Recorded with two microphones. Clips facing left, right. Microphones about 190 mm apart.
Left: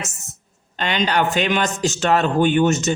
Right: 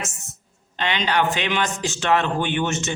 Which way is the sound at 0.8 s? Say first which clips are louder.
Left 2 dB; 45° left (ahead or behind).